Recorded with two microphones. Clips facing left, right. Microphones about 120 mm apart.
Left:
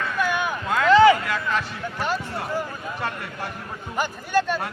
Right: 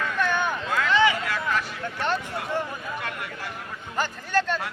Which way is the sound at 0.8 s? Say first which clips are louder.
Left 8 dB; 40° left (ahead or behind).